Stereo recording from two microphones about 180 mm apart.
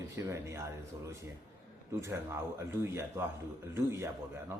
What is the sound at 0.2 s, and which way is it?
Speech, 15° right (ahead or behind).